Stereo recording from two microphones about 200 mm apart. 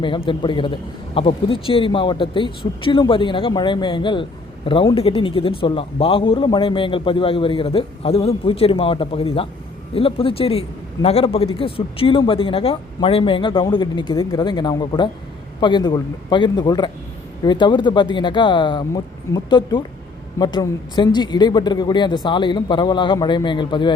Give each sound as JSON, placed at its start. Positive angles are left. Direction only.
{"t": 0.3, "sound": "a man's voice", "side_deg": 25}